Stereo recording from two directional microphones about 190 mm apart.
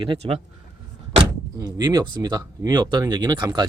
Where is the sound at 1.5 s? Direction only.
20° right (ahead or behind).